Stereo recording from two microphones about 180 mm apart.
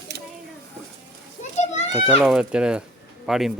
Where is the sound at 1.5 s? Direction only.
40° left (ahead or behind).